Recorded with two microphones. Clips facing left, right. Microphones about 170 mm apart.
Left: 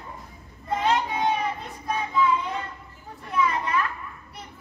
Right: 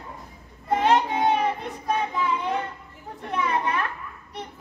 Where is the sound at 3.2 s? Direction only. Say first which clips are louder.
Even; 60° right (ahead or behind).